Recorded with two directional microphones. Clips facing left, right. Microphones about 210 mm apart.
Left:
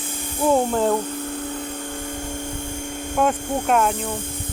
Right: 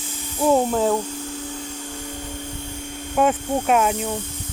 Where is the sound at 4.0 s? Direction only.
55° left (ahead or behind).